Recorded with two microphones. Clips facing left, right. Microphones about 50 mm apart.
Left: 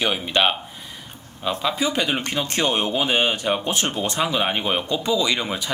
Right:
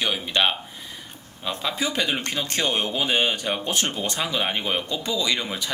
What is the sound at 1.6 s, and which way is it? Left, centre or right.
Speech, centre.